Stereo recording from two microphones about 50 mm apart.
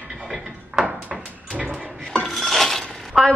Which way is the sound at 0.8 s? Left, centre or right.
Centre.